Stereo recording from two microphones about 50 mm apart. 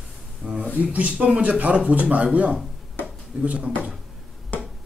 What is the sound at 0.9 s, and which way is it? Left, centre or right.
Speech, right.